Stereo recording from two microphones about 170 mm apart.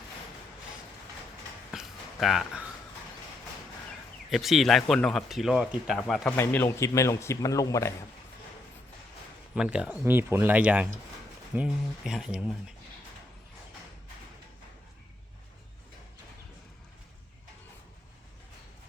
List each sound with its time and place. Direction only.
1.7 s a sound: 5° right (ahead or behind)
2.2 s speech: centre (ahead or behind)
4.3 s speech: centre (ahead or behind)
6.3 s a man's voice: 15° left (ahead or behind)
9.6 s speech: 5° right (ahead or behind)